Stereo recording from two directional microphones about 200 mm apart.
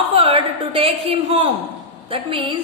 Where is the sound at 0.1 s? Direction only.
30° right (ahead or behind).